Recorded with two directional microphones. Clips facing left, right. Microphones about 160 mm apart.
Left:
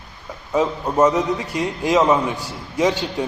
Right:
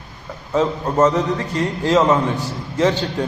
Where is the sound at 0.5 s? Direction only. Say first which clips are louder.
Right 1 dB; 10° left (ahead or behind).